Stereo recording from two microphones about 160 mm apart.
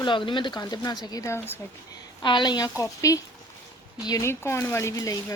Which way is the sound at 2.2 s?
30° left (ahead or behind).